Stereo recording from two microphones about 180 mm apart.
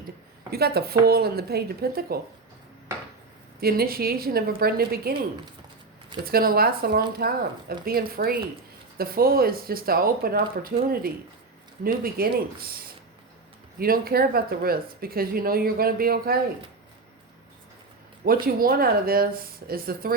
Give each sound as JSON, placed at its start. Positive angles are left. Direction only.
{"t": 0.5, "sound": "speech", "side_deg": -60}
{"t": 3.6, "sound": "speech", "side_deg": -55}
{"t": 6.2, "sound": "speech", "side_deg": -55}
{"t": 18.3, "sound": "speech", "side_deg": -55}